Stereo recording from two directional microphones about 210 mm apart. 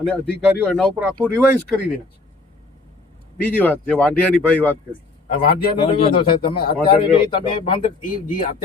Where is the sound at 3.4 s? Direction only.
5° left (ahead or behind).